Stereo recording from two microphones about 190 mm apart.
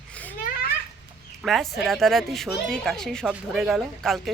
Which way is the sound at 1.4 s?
Centre (ahead or behind).